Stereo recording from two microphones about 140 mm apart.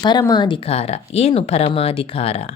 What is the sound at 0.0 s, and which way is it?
Speech, 30° left (ahead or behind).